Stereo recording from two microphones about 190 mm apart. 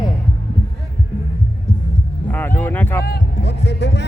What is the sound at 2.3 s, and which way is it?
Speech, 10° left (ahead or behind).